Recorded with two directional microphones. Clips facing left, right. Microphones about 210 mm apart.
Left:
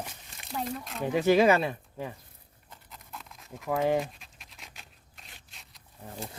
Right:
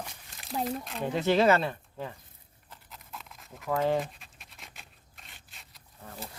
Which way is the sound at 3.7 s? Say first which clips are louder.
Left 1 dB; 15° left (ahead or behind).